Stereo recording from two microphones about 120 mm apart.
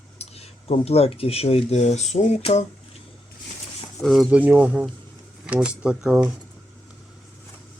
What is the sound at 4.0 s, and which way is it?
Speech, centre (ahead or behind).